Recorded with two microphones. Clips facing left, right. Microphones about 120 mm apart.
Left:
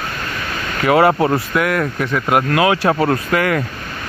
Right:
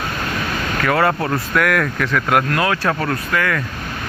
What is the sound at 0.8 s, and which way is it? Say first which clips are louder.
Speech: left 5 dB; 20° left (ahead or behind).